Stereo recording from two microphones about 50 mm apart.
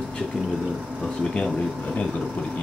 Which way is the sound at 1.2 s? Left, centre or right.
Centre.